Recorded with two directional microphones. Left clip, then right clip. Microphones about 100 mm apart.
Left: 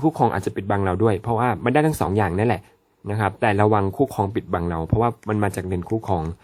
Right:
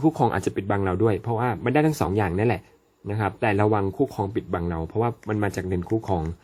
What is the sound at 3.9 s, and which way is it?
Speech, 50° left (ahead or behind).